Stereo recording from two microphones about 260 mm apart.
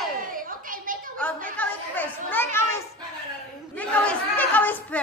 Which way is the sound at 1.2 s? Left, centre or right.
Centre.